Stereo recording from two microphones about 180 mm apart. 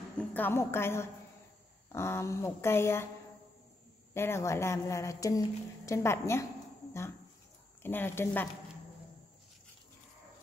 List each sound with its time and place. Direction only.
0.2 s speech: 10° left (ahead or behind)
4.1 s speech: 15° left (ahead or behind)
7.8 s speech: 10° left (ahead or behind)